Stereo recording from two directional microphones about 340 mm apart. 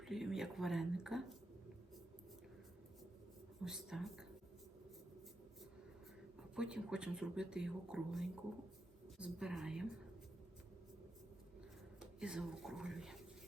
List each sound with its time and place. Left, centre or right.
0.0 s speech: centre
3.6 s speech: centre
6.6 s speech: centre
11.9 s speech: centre